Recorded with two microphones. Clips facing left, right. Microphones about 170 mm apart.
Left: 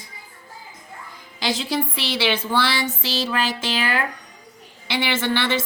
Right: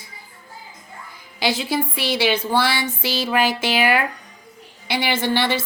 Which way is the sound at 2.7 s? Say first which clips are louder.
Right 1 dB; 10° right (ahead or behind).